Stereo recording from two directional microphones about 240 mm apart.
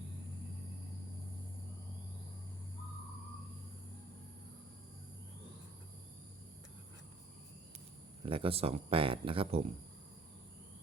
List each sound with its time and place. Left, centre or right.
8.2 s speech: right